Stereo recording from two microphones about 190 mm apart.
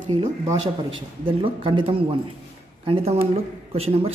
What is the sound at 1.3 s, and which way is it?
A man's voice, 30° right (ahead or behind).